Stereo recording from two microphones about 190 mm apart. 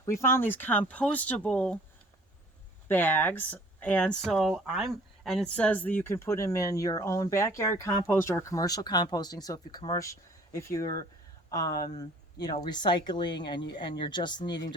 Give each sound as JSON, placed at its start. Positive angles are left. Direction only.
{"t": 0.0, "sound": "speech", "side_deg": 15}
{"t": 2.8, "sound": "speech", "side_deg": 10}